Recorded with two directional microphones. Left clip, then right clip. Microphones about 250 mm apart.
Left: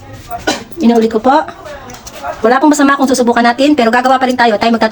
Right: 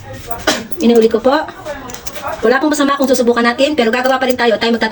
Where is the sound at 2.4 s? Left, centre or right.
Left.